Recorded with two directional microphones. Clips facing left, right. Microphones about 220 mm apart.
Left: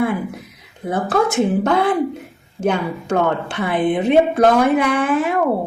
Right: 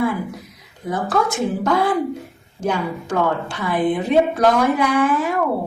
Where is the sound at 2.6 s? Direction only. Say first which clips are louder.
Left 3 dB; 60° left (ahead or behind).